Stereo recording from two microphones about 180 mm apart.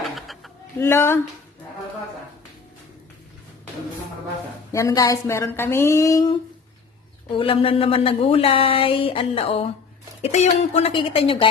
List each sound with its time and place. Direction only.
0.0 s a sound: centre (ahead or behind)
0.8 s a woman's voice: 15° left (ahead or behind)
4.7 s a woman's voice: 15° left (ahead or behind)
7.3 s speech: 30° left (ahead or behind)